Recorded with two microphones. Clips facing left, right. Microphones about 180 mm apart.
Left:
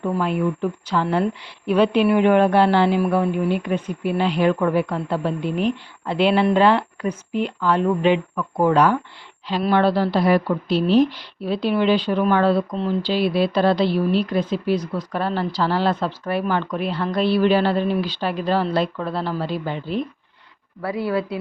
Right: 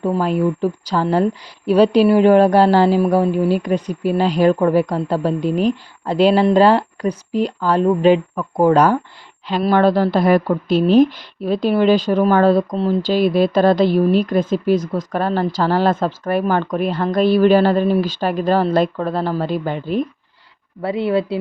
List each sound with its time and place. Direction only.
0.0 s speech: 35° right (ahead or behind)
20.8 s speech: 25° right (ahead or behind)